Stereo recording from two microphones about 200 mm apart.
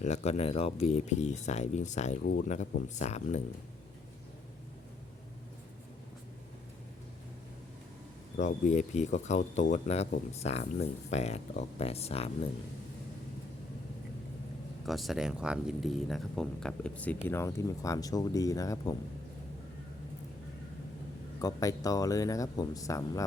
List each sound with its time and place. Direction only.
0.0 s speech: 35° left (ahead or behind)
8.4 s speech: 35° left (ahead or behind)
14.8 s speech: centre (ahead or behind); by 18.9 s 15° left (ahead or behind)
21.4 s speech: 15° left (ahead or behind)